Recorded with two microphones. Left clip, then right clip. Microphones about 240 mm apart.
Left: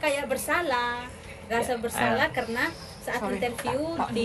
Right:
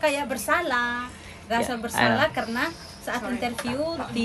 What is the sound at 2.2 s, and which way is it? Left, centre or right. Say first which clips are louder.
Speech: right 2 dB; centre.